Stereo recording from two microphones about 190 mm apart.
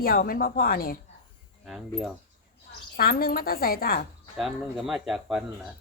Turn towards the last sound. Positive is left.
turn(degrees=0)  # may be behind; listen again after turning